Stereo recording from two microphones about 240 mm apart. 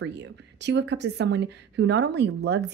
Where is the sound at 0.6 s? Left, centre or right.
Right.